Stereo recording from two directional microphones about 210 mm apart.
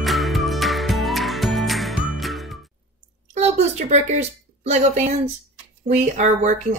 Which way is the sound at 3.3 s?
30° right (ahead or behind).